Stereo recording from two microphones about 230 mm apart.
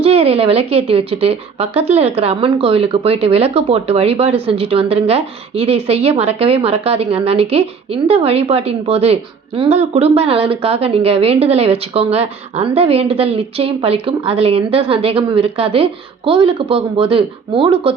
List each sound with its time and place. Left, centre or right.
0.0 s a woman's voice: right